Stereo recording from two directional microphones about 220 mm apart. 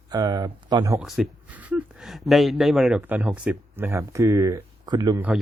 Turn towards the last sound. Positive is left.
turn(degrees=-10)  # may be behind; listen again after turning